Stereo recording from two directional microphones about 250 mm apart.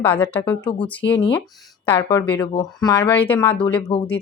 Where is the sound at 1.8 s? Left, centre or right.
Centre.